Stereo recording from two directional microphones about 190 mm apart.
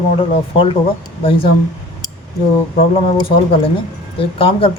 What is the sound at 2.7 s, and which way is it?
Speech, 30° left (ahead or behind).